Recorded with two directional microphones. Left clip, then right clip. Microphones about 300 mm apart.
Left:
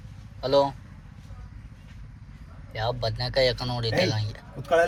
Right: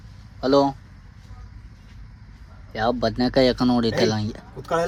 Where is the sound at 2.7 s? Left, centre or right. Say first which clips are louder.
Right 6 dB; right.